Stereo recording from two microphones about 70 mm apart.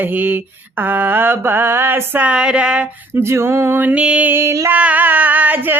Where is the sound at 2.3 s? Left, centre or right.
Centre.